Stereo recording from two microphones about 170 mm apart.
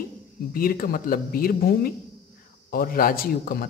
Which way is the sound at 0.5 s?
60° left (ahead or behind).